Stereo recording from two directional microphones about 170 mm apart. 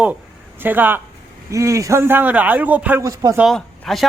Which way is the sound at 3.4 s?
Centre (ahead or behind).